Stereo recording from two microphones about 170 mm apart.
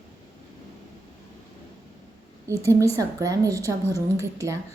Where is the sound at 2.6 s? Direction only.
20° right (ahead or behind).